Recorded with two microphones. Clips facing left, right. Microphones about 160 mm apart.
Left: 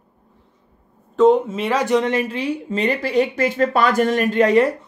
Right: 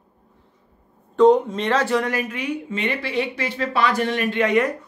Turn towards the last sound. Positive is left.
turn(degrees=35)  # may be behind; listen again after turning